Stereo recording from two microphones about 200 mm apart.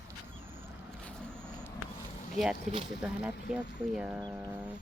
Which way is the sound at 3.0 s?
5° right (ahead or behind).